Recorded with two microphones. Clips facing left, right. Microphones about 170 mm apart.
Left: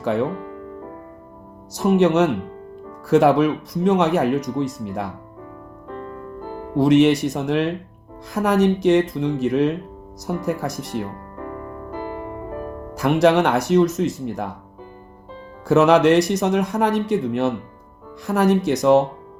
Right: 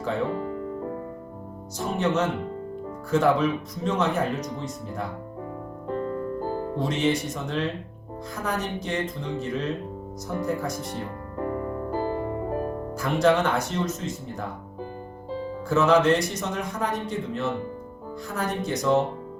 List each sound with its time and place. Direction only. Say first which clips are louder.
1.8 s speech: left 9 dB; 70° left (ahead or behind)
5.9 s music: right 5 dB; 35° right (ahead or behind)
6.7 s speech: left 12 dB; 75° left (ahead or behind)
11.3 s piano: right 6 dB; 35° right (ahead or behind)
13.2 s speech: left 4 dB; 75° left (ahead or behind)
15.7 s speech: left 6 dB; 70° left (ahead or behind)